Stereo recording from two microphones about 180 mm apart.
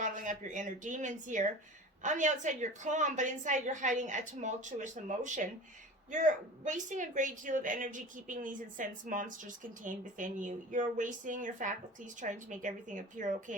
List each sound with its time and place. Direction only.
0.0 s a woman's voice: 45° right (ahead or behind)